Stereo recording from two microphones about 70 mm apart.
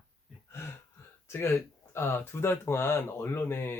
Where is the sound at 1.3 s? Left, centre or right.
Left.